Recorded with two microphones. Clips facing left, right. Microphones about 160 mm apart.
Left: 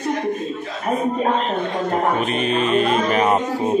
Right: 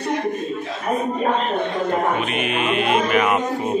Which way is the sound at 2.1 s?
35° left (ahead or behind).